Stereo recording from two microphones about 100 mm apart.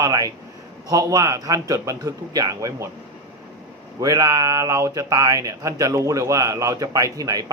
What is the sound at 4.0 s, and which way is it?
Speech, 35° right (ahead or behind).